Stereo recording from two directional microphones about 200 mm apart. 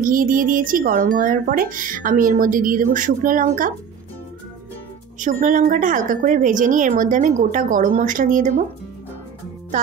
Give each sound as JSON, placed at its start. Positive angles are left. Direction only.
{"t": 0.0, "sound": "speech", "side_deg": -45}
{"t": 5.2, "sound": "a woman's voice", "side_deg": -40}